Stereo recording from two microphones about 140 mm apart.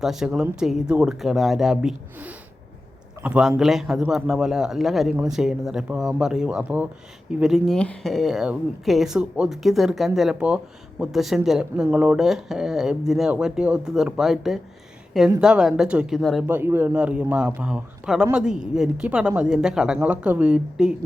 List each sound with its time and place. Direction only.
0.0 s speech: 5° right (ahead or behind)
16.5 s speech: 15° right (ahead or behind)